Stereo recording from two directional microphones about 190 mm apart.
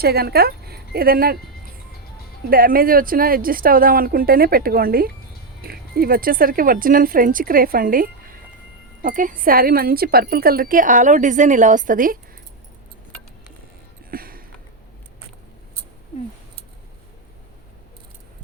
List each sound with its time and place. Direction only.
0.0 s speech: 55° right (ahead or behind)
2.5 s a woman's voice: 50° right (ahead or behind)
14.1 s sniff: 50° right (ahead or behind)